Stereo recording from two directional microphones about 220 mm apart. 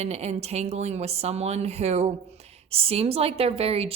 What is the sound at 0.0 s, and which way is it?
Speech, 30° right (ahead or behind).